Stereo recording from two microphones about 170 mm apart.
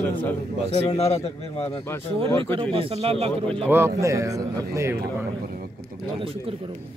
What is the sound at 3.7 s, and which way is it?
A man's voice, 15° right (ahead or behind).